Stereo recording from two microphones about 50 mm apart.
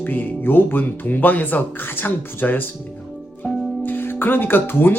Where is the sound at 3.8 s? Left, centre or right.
Left.